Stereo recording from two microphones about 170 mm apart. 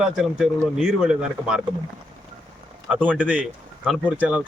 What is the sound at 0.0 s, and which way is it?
Speech, 5° right (ahead or behind).